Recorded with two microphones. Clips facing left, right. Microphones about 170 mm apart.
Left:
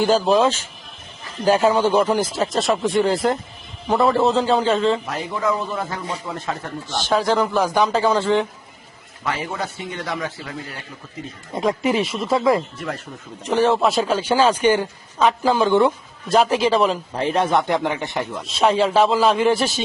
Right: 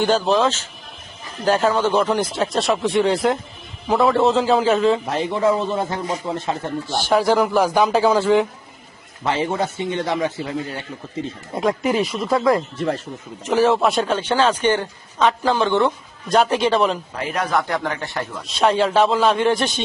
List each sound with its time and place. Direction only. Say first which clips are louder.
0.0 s a man's voice: left 1 dB; 10° left (ahead or behind)
5.0 s speech: right 4 dB; 25° right (ahead or behind)
6.9 s a man's voice: right 2 dB; 10° right (ahead or behind)
9.2 s speech: right 5 dB; 25° right (ahead or behind)
11.5 s a man's voice: even; centre (ahead or behind)
17.2 s speech: left 5 dB; 30° left (ahead or behind)
18.4 s a man's voice: even; centre (ahead or behind)